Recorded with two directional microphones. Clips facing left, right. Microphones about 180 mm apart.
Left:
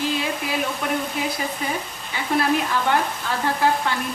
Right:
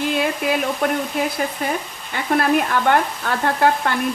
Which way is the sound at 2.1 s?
55° right (ahead or behind).